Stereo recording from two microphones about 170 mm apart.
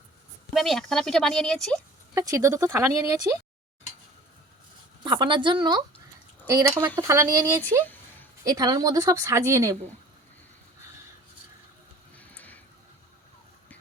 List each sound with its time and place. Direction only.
0.5 s speech: centre (ahead or behind)
2.1 s speech: 20° right (ahead or behind)
5.0 s speech: 25° right (ahead or behind)
7.6 s a sound: 10° left (ahead or behind)
8.4 s speech: 20° right (ahead or behind)
12.1 s a sound: 10° left (ahead or behind)